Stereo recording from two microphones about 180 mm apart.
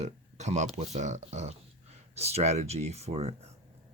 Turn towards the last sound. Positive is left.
turn(degrees=-35)  # may be behind; listen again after turning